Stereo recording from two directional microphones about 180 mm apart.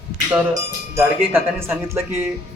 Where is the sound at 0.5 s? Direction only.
15° right (ahead or behind).